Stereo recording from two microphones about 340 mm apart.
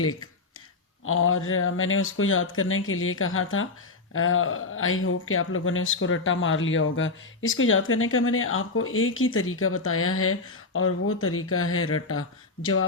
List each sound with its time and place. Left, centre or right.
1.0 s speech: left